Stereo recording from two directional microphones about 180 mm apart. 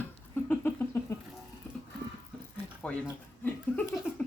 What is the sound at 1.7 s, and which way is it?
Horse, 10° left (ahead or behind).